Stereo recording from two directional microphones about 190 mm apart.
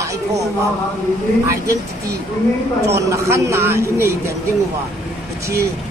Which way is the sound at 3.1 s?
15° right (ahead or behind).